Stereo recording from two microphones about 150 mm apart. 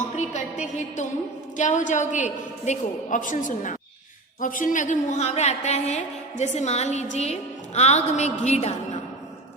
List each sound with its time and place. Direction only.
0.2 s a woman's voice: 50° left (ahead or behind)